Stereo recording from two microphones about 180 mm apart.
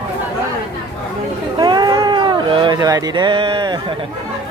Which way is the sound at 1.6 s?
25° right (ahead or behind).